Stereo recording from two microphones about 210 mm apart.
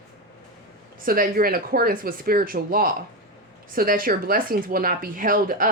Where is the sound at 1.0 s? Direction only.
45° right (ahead or behind).